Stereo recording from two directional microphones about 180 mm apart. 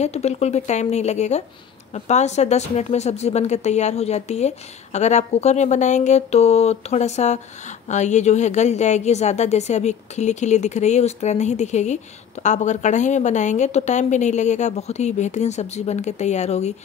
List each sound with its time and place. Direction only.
0.0 s speech: 35° left (ahead or behind)